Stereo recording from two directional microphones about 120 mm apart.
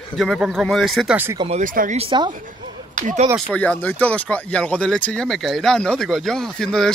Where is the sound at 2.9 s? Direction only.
90° right.